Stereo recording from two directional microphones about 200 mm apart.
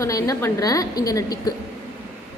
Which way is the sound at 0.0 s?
15° left (ahead or behind).